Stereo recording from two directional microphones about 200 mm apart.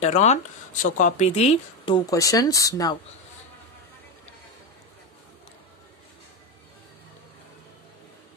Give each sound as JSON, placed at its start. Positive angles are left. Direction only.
{"t": 0.0, "sound": "speech", "side_deg": 35}
{"t": 2.0, "sound": "speech", "side_deg": 15}